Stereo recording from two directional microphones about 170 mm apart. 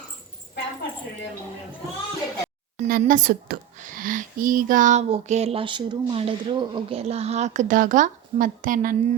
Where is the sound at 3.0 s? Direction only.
50° right (ahead or behind).